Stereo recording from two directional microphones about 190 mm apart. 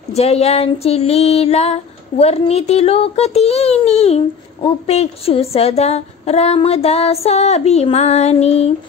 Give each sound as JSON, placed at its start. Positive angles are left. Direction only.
{"t": 0.1, "sound": "female singing", "side_deg": 35}